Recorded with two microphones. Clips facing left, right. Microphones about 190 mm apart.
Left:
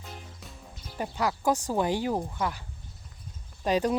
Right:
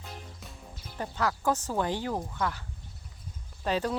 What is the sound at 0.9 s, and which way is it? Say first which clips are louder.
Speech: left 2 dB; 15° left (ahead or behind).